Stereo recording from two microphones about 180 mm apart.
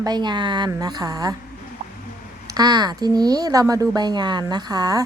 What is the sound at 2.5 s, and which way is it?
A woman's voice, 25° right (ahead or behind).